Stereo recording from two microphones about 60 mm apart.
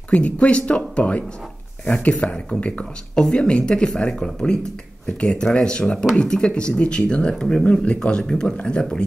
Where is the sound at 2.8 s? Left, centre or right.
Centre.